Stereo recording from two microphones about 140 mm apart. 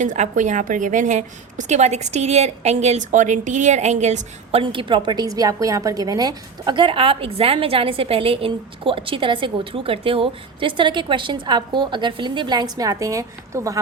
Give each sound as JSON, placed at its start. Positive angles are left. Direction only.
{"t": 0.0, "sound": "a woman's voice", "side_deg": -60}
{"t": 4.6, "sound": "a woman's voice", "side_deg": -35}